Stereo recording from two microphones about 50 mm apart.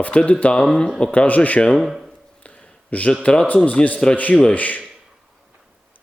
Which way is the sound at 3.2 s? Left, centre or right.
Left.